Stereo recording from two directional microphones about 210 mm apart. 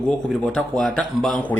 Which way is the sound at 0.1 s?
5° left (ahead or behind).